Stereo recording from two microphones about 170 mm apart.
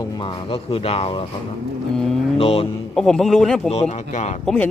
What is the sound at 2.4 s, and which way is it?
Speech, 35° left (ahead or behind).